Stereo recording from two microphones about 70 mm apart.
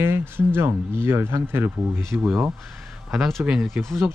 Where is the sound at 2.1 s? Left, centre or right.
Right.